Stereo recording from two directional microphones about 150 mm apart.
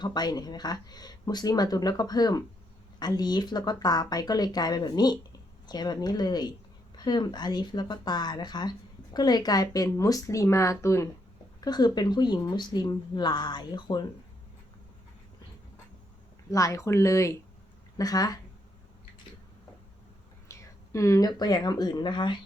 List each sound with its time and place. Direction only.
0.0 s speech: 30° left (ahead or behind)
16.5 s speech: 20° left (ahead or behind)
20.5 s speech: 20° left (ahead or behind)